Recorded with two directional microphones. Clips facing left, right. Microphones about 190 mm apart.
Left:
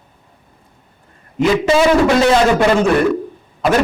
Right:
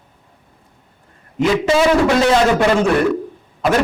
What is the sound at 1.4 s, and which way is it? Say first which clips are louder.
A man's voice: left 2 dB; 15° left (ahead or behind).